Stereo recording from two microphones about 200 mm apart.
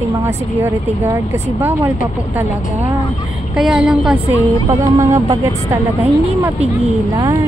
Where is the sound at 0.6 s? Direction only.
10° right (ahead or behind).